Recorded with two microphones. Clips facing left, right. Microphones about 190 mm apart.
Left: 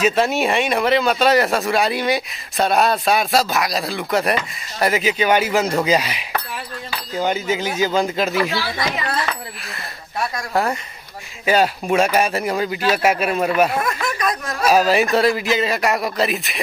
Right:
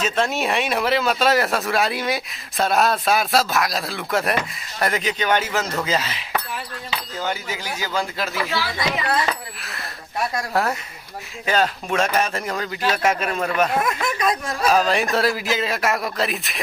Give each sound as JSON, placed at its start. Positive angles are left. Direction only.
{"t": 0.0, "sound": "speech", "side_deg": 5}
{"t": 10.5, "sound": "speech", "side_deg": 0}
{"t": 13.8, "sound": "speech", "side_deg": -25}
{"t": 14.6, "sound": "speech", "side_deg": 10}